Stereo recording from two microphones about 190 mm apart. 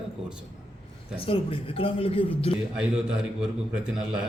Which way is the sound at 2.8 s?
5° right (ahead or behind).